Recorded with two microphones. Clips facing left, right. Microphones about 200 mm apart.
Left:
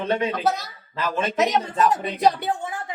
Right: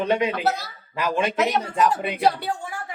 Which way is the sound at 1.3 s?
20° left (ahead or behind).